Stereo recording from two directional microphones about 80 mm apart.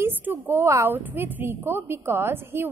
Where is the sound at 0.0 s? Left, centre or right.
Right.